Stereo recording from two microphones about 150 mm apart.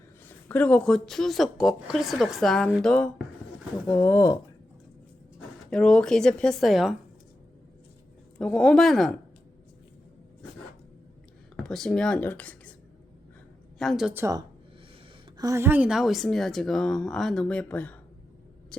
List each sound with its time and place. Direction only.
0.3 s speech: 10° left (ahead or behind)
5.7 s speech: 5° left (ahead or behind)
8.4 s speech: 5° left (ahead or behind)
11.5 s speech: 5° left (ahead or behind)
13.7 s speech: centre (ahead or behind)
14.1 s speech: 15° right (ahead or behind)
15.4 s speech: 20° right (ahead or behind); by 18.9 s 5° left (ahead or behind)